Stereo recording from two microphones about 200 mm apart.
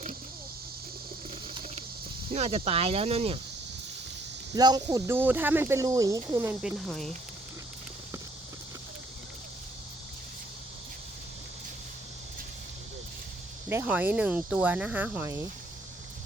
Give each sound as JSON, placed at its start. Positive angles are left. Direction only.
{"t": 2.3, "sound": "speech", "side_deg": -30}
{"t": 4.5, "sound": "speech", "side_deg": -20}
{"t": 13.7, "sound": "speech", "side_deg": -10}